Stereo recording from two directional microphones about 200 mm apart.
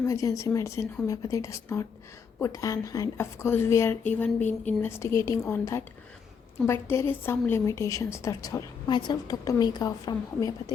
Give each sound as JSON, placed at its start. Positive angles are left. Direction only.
{"t": 0.0, "sound": "speech", "side_deg": 15}
{"t": 6.8, "sound": "speech", "side_deg": 10}